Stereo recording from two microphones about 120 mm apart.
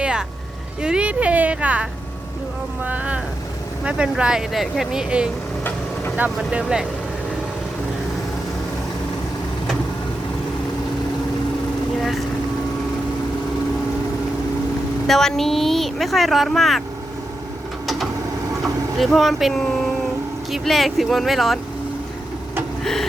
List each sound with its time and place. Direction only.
0.0 s vehicle: 10° right (ahead or behind)
0.8 s a woman's voice: 10° right (ahead or behind)
6.3 s a woman's voice: 5° right (ahead or behind)
11.9 s boat: centre (ahead or behind)
15.0 s speech: 5° left (ahead or behind)
17.8 s mechanisms: centre (ahead or behind)
18.6 s speech: centre (ahead or behind)
22.8 s vehicle: centre (ahead or behind)